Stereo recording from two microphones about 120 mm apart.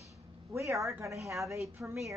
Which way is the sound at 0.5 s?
25° right (ahead or behind).